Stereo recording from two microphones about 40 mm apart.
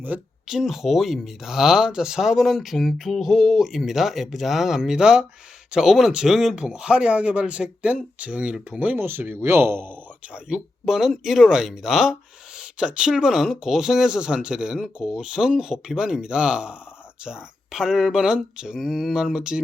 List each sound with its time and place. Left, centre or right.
0.1 s speech: right
0.4 s speech: centre
4.8 s speech: centre
6.6 s speech: right
9.0 s speech: right
10.5 s speech: centre
12.5 s a sound: right
13.1 s speech: centre